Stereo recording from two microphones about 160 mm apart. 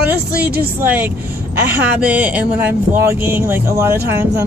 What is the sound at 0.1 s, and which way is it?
Speech, 80° right.